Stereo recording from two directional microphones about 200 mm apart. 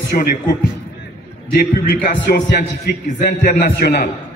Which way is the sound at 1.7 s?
50° left (ahead or behind).